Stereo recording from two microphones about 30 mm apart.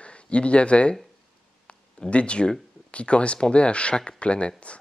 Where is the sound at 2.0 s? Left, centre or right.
Left.